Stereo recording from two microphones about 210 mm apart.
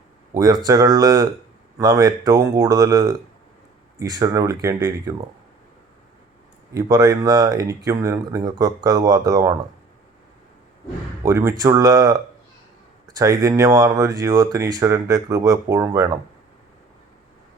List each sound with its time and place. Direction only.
0.3 s speech: 20° right (ahead or behind)
6.7 s speech: 15° right (ahead or behind)
11.2 s speech: 15° right (ahead or behind)